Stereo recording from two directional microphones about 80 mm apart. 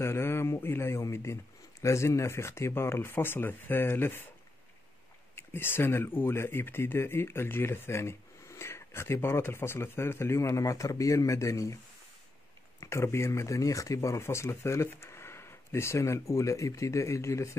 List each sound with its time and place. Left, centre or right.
0.0 s a man's voice: left
5.3 s speech: left
12.8 s speech: left